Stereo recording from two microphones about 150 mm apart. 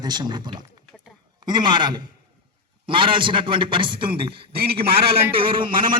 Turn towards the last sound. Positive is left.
turn(degrees=-35)  # may be behind; listen again after turning